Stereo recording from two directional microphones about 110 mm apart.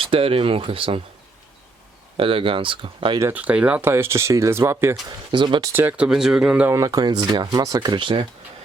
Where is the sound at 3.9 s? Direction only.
25° right (ahead or behind).